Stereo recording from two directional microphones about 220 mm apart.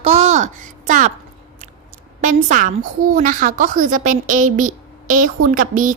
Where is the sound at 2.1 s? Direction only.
35° right (ahead or behind).